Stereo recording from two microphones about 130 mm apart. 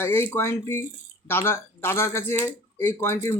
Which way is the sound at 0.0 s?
20° left (ahead or behind).